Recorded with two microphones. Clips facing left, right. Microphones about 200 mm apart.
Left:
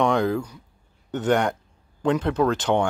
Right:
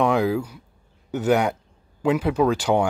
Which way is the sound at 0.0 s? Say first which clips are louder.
Right 1 dB; 5° right (ahead or behind).